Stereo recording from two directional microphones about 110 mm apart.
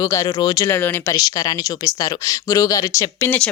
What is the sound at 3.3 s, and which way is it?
Speech, 10° left (ahead or behind).